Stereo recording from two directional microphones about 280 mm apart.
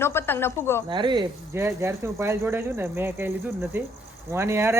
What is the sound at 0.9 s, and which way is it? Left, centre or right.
Speech, centre.